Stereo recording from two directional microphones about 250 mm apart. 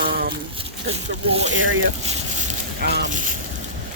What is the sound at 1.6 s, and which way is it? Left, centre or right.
Speech, right.